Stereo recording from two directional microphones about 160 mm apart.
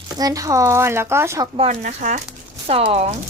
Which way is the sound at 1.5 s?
45° right (ahead or behind).